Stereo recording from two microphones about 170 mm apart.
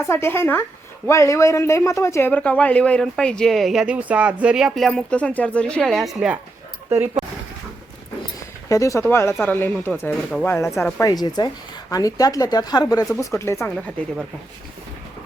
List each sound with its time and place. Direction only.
0.0 s speech: 15° left (ahead or behind); by 6.4 s 5° right (ahead or behind)
8.7 s speech: 20° left (ahead or behind)
11.0 s speech: 25° left (ahead or behind)